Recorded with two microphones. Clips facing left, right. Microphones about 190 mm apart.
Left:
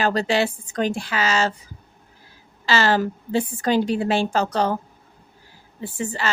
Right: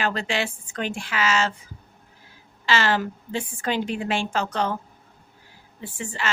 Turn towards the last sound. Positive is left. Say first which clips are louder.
# left 4 dB
turn(degrees=35)  # may be behind; listen again after turning